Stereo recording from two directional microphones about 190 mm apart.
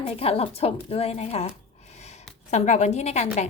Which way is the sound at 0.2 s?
30° left (ahead or behind).